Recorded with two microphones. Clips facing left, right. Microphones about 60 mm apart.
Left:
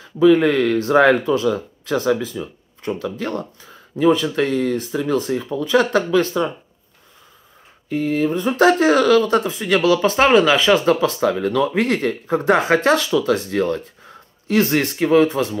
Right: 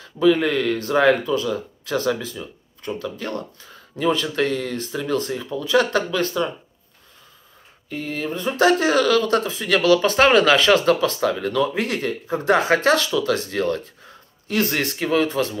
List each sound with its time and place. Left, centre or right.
0.0 s speech: left
7.9 s speech: left